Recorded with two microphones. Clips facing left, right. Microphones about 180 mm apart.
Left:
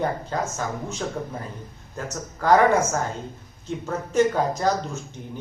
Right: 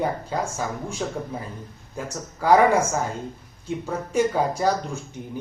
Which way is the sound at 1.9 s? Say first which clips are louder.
Even; 10° right (ahead or behind).